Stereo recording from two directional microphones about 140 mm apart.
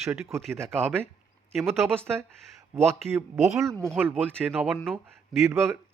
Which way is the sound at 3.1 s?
20° right (ahead or behind).